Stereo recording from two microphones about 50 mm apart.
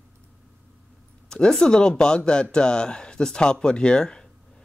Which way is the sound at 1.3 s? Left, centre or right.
Centre.